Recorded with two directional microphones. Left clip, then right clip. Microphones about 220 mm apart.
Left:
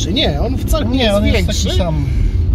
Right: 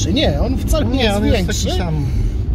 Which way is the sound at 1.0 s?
20° left (ahead or behind).